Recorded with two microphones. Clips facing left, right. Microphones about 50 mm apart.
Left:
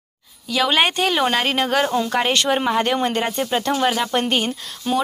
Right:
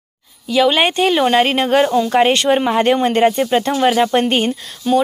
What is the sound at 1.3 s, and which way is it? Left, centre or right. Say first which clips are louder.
Speech: right 6 dB; right.